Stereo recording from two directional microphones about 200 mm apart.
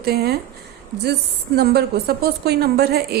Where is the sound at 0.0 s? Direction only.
50° right (ahead or behind).